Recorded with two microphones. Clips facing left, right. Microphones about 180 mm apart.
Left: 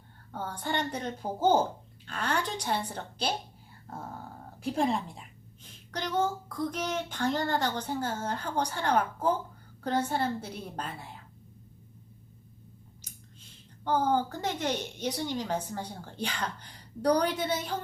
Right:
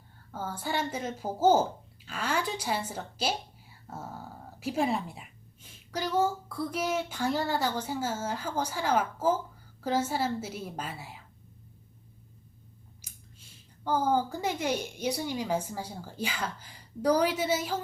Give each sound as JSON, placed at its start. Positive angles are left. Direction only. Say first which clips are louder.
{"t": 0.3, "sound": "a woman's voice", "louder": "even", "side_deg": -5}
{"t": 13.8, "sound": "speech", "louder": "even", "side_deg": -10}